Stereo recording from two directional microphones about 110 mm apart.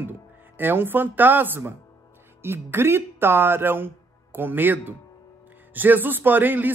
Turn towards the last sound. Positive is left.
turn(degrees=-15)  # may be behind; listen again after turning